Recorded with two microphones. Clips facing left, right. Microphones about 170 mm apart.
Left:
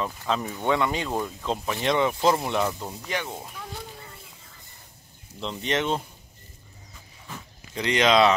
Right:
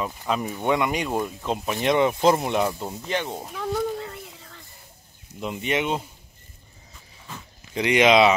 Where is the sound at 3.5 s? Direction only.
75° right (ahead or behind).